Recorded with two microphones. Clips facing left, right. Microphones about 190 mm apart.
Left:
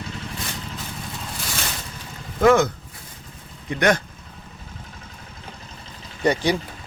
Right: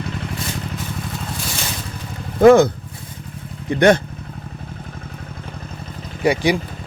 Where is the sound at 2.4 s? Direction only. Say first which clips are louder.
Right 6 dB; 35° right (ahead or behind).